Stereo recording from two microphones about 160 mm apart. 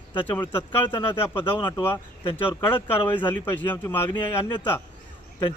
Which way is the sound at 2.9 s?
15° left (ahead or behind).